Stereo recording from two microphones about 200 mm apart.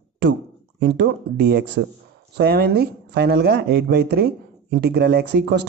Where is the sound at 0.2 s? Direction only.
55° right (ahead or behind).